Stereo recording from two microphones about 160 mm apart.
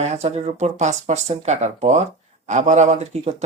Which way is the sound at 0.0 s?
45° right (ahead or behind).